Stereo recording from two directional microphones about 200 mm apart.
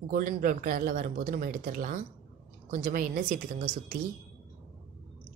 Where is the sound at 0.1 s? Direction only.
45° right (ahead or behind).